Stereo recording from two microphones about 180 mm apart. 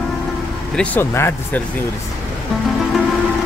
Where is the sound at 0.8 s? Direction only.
10° left (ahead or behind).